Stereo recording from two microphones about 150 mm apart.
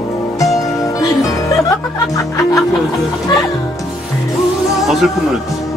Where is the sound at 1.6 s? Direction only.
20° left (ahead or behind).